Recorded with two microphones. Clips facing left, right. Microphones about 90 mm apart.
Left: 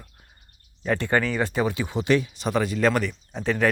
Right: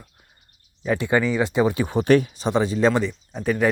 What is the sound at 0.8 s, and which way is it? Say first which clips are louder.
Speech: right 2 dB; 10° right (ahead or behind).